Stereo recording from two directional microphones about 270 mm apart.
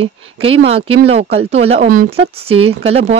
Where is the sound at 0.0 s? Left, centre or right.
Right.